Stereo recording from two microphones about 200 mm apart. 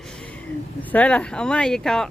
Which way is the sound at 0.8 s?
10° left (ahead or behind).